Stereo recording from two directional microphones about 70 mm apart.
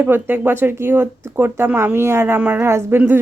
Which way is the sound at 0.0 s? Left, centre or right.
Right.